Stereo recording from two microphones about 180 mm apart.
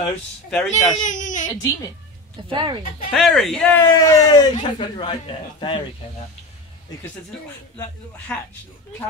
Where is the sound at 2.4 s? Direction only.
25° right (ahead or behind).